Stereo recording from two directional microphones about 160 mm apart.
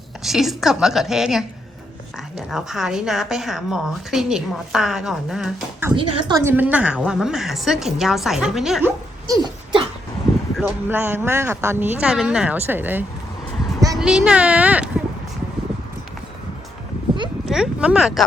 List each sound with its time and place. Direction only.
0.2 s a woman's voice: centre (ahead or behind)
5.9 s speech: 30° right (ahead or behind)
6.3 s a woman's voice: 15° right (ahead or behind)
8.8 s a sound: 20° right (ahead or behind)
10.6 s speech: 15° right (ahead or behind)
17.4 s speech: 5° right (ahead or behind)